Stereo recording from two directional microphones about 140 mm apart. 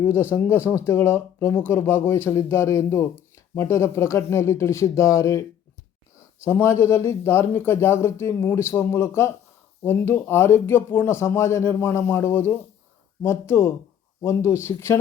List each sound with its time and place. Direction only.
0.0 s speech: 15° left (ahead or behind)